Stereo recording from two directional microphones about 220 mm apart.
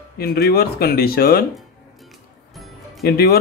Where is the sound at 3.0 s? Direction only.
45° left (ahead or behind).